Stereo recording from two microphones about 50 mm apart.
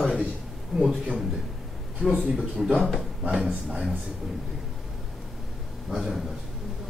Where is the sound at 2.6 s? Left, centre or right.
Centre.